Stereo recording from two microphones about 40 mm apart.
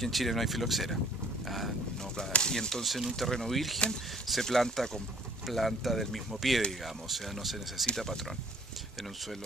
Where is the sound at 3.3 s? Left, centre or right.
Centre.